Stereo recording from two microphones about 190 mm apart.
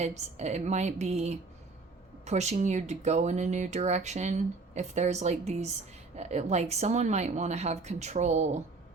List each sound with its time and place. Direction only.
0.0 s speech: 35° right (ahead or behind)